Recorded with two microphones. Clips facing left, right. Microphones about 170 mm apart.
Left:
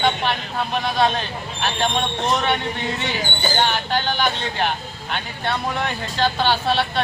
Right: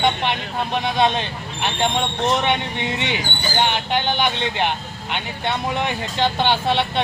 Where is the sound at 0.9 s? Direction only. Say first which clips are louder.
Right 1 dB; 20° right (ahead or behind).